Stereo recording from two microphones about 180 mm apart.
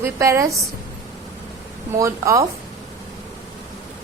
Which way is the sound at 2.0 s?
15° right (ahead or behind).